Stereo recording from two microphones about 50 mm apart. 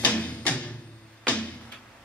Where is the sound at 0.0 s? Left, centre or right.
Left.